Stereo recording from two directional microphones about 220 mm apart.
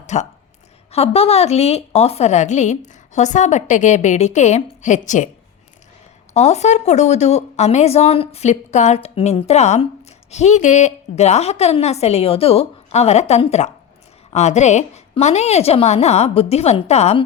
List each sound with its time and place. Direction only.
0.0 s a woman's voice: 30° left (ahead or behind)
6.3 s a woman's voice: 30° left (ahead or behind)